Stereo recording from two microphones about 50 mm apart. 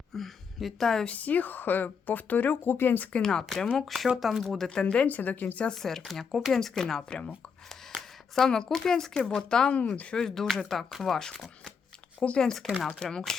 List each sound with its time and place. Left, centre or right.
0.1 s a woman's voice: centre
1.0 s speech: left
3.2 s speech: centre
3.8 s speech: centre
5.0 s speech: left
5.7 s speech: centre
8.4 s speech: centre
9.7 s speech: left
10.2 s speech: centre
12.6 s speech: centre
12.9 s speech: centre